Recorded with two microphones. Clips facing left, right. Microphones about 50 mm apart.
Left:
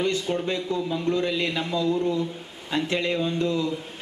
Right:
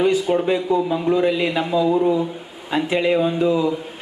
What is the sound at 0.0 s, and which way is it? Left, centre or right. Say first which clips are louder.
A man's voice: right 8 dB; centre.